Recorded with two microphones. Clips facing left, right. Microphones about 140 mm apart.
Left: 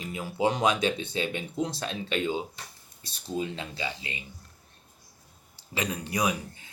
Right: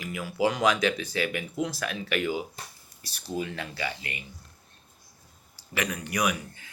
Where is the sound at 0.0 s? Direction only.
25° left (ahead or behind).